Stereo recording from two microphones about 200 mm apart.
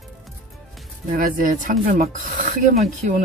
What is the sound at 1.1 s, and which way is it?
Speech, 45° right (ahead or behind).